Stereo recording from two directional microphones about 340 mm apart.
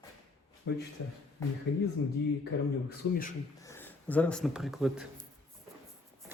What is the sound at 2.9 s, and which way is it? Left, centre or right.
Speech, left.